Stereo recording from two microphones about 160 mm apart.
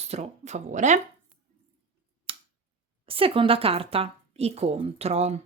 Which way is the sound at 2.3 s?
35° right (ahead or behind).